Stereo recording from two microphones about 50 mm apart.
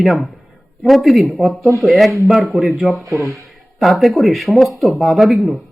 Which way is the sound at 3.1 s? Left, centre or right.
Right.